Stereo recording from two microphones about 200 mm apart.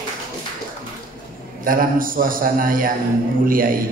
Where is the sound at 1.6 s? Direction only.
45° right (ahead or behind).